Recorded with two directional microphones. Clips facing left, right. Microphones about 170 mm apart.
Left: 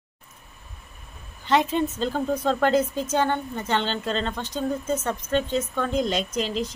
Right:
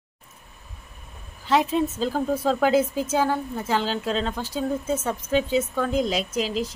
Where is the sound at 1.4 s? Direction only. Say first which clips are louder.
Right 1 dB; centre (ahead or behind).